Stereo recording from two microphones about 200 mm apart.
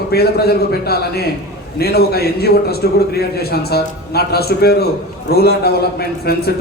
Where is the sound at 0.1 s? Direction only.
50° left (ahead or behind).